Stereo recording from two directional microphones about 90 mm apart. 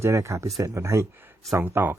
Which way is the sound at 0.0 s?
35° right (ahead or behind).